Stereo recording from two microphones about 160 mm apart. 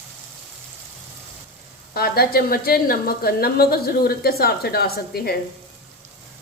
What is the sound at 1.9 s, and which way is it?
A woman's voice, 70° left (ahead or behind).